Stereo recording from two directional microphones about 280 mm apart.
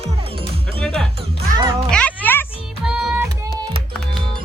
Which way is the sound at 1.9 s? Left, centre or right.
Centre.